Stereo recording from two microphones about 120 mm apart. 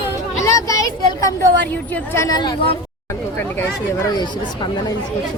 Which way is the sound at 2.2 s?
35° left (ahead or behind).